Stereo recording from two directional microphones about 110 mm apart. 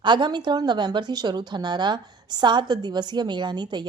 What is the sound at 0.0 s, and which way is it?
A woman's voice, 45° right (ahead or behind).